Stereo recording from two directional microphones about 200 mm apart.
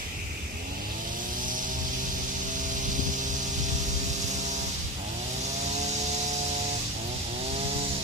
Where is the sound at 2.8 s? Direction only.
40° right (ahead or behind).